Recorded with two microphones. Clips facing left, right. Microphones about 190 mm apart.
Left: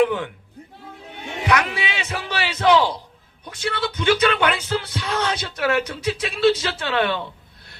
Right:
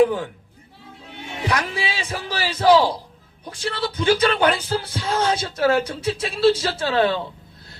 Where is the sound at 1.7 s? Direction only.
35° right (ahead or behind).